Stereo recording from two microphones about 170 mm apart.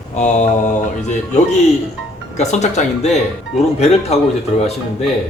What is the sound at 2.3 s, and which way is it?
Speech, 40° left (ahead or behind).